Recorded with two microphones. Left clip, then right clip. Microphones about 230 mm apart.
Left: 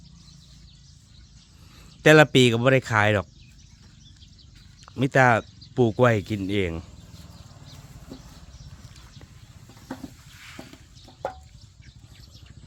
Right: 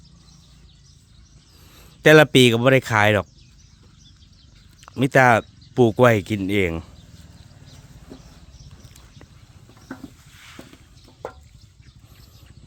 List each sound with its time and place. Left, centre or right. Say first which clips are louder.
1.7 s speech: right 3 dB; centre
4.9 s speech: right 4 dB; right
10.4 s boat: even; centre